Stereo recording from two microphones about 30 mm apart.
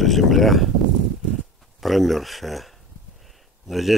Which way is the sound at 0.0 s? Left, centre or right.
Centre.